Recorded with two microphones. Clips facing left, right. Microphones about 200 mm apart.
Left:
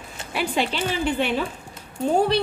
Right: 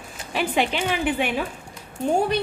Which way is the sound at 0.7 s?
10° right (ahead or behind).